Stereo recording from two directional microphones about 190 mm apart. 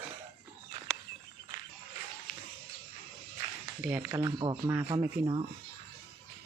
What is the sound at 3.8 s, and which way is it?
Speech, 10° right (ahead or behind).